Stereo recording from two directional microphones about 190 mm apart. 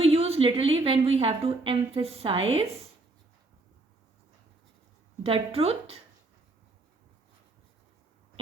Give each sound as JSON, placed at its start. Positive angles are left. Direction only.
{"t": 0.0, "sound": "a woman's voice", "side_deg": -30}
{"t": 5.2, "sound": "a woman's voice", "side_deg": -30}